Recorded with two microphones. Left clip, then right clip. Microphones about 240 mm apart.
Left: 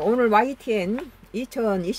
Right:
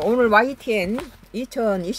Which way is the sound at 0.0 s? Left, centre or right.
Centre.